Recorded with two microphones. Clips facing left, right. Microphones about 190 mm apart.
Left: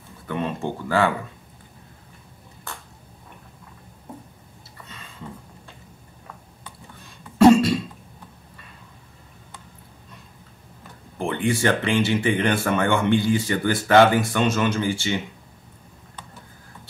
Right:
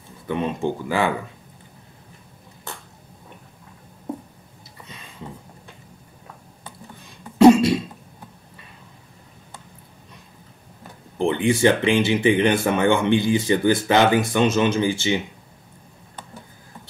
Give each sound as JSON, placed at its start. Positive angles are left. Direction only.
{"t": 0.3, "sound": "speech", "side_deg": -15}
{"t": 7.3, "sound": "cough", "side_deg": -20}
{"t": 11.1, "sound": "speech", "side_deg": -20}